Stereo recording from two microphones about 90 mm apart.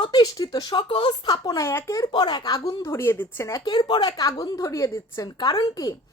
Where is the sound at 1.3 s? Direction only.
35° left (ahead or behind).